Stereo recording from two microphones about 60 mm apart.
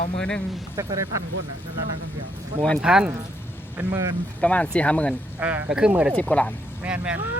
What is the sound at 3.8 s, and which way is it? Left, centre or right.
Speech, right.